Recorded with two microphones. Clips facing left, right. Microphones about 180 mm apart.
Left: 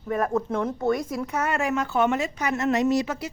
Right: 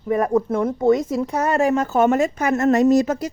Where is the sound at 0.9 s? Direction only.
25° right (ahead or behind).